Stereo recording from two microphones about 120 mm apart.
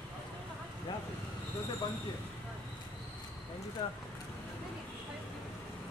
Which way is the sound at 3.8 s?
35° left (ahead or behind).